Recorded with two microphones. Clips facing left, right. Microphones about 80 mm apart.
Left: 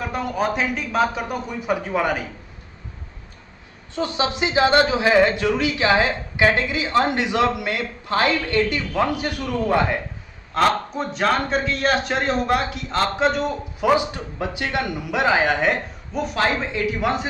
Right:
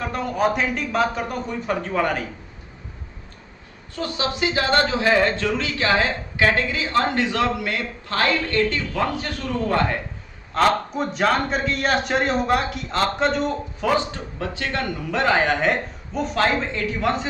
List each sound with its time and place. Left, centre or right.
0.0 s a man's voice: centre
3.9 s speech: left
10.5 s a man's voice: centre